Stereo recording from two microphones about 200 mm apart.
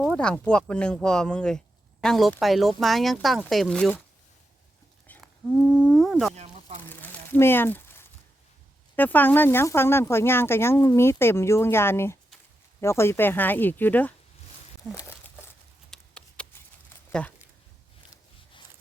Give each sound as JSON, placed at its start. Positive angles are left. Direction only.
{"t": 0.0, "sound": "speech", "side_deg": 5}
{"t": 5.0, "sound": "wild animals", "side_deg": 5}
{"t": 6.3, "sound": "a sound", "side_deg": -30}
{"t": 6.8, "sound": "crumpling", "side_deg": 10}
{"t": 9.0, "sound": "speech", "side_deg": 10}
{"t": 15.9, "sound": "a sound", "side_deg": 5}
{"t": 17.1, "sound": "speech", "side_deg": 5}